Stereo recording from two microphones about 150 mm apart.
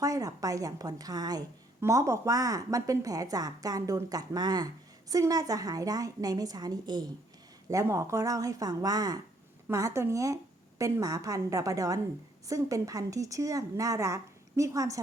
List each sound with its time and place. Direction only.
0.0 s a woman's voice: 25° right (ahead or behind)